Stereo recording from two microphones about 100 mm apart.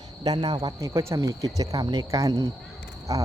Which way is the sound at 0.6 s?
35° right (ahead or behind).